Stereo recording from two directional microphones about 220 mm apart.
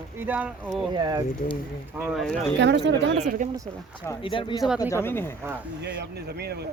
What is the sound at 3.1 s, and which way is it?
Speech, 35° right (ahead or behind).